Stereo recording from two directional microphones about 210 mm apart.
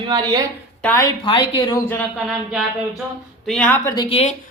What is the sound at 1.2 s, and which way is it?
Speech, 25° left (ahead or behind).